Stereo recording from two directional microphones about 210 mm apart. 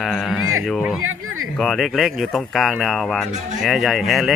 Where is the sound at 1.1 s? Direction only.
80° right.